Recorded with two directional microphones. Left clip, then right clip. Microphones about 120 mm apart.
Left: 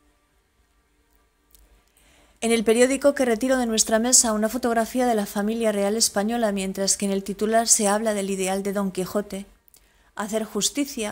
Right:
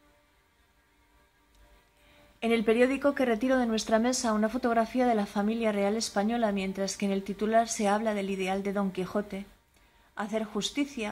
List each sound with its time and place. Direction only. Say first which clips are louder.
2.4 s speech: left 6 dB; 45° left (ahead or behind)
3.8 s a woman's voice: left 6 dB; 25° left (ahead or behind); by 9.1 s 45° left (ahead or behind)
9.1 s a woman's voice: left 5 dB; 30° left (ahead or behind)
10.1 s a woman's voice: left 5 dB; 45° left (ahead or behind)